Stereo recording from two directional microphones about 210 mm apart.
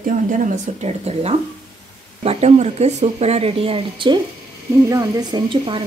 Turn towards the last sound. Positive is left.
turn(degrees=-25)  # may be behind; listen again after turning